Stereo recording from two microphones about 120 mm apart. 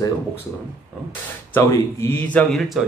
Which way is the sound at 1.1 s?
20° left (ahead or behind).